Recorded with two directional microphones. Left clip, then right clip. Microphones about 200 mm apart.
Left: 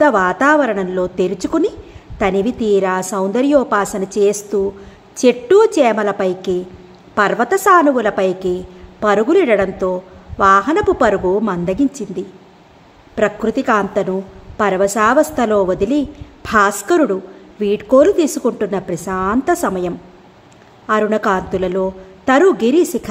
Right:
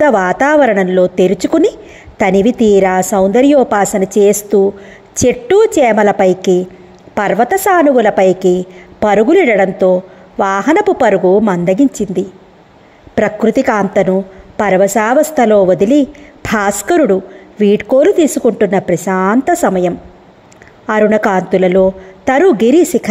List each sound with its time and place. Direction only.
0.0 s a woman's voice: 25° right (ahead or behind)